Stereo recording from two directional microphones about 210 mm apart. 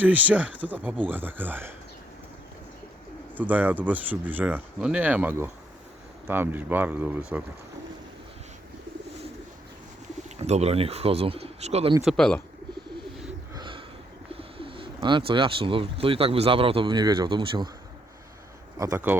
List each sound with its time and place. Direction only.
0.0 s speech: 5° right (ahead or behind)
3.3 s speech: 5° right (ahead or behind)
10.2 s speech: 30° right (ahead or behind)
12.0 s speech: 5° left (ahead or behind)
13.5 s a sound: 20° right (ahead or behind)
14.3 s speech: 25° right (ahead or behind)
18.8 s speech: 10° right (ahead or behind)